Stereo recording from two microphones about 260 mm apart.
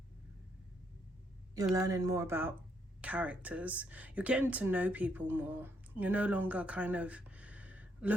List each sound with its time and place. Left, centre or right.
1.7 s speech: centre